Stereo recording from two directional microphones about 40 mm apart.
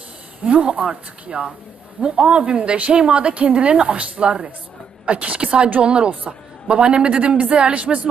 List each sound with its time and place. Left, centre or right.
0.4 s speech: right
2.7 s a woman's voice: right
3.0 s a woman's voice: right